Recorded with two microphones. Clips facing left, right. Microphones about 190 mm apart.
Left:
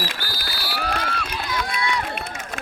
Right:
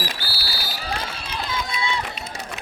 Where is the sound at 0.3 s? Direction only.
55° left (ahead or behind).